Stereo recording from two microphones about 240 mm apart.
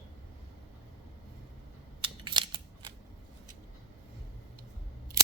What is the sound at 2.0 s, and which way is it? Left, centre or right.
Scissors, centre.